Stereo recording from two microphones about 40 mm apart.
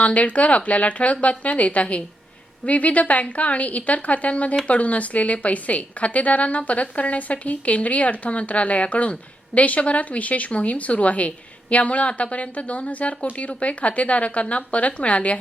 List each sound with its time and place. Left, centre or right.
0.0 s a woman's voice: left